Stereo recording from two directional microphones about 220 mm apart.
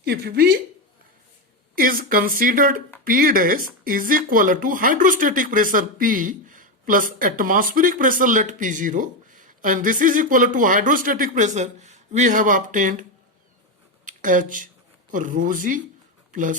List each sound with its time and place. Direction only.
0.0 s a woman's voice: 45° right (ahead or behind)
1.7 s speech: 40° right (ahead or behind)